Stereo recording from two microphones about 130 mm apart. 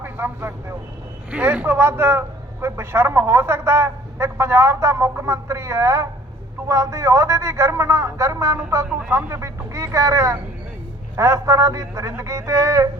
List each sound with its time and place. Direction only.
0.0 s vehicle: 15° right (ahead or behind)
1.3 s a man's voice: 10° right (ahead or behind)